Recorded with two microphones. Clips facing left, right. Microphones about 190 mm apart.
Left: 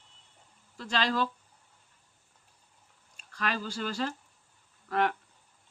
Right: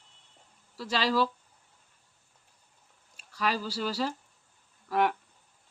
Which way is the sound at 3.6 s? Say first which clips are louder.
Right 2 dB; 50° left (ahead or behind).